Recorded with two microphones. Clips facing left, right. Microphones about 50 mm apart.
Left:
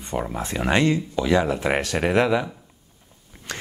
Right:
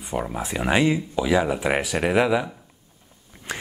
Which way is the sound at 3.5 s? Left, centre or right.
Centre.